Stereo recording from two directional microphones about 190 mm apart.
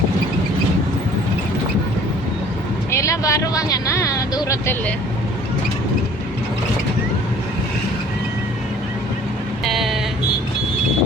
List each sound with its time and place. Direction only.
2.9 s vehicle: 15° left (ahead or behind)
9.6 s vehicle: centre (ahead or behind)